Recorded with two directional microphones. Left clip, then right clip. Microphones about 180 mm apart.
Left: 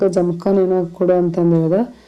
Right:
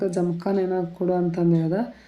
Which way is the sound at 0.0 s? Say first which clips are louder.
Left 9 dB; 20° left (ahead or behind).